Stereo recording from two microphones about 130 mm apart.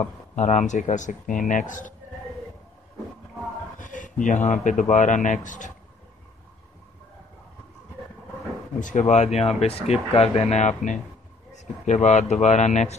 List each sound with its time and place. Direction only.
0.0 s speech: 65° left (ahead or behind); by 2.0 s 80° left
3.8 s speech: 80° left
8.7 s speech: 75° left (ahead or behind)